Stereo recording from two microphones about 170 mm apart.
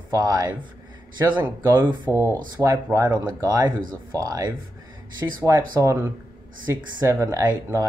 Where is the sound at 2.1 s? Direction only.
15° left (ahead or behind).